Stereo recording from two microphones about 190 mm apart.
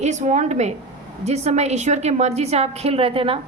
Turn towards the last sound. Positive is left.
turn(degrees=-30)  # may be behind; listen again after turning